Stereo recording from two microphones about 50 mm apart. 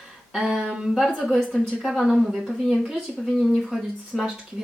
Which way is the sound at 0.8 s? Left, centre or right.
Centre.